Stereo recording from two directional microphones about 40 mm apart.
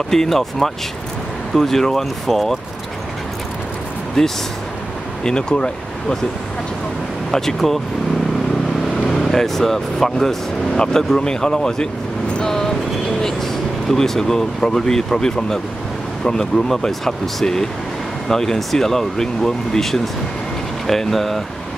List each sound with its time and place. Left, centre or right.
0.1 s speech: centre
5.2 s speech: left
7.2 s speech: centre
8.9 s speech: centre
12.4 s vehicle: centre
13.8 s speech: centre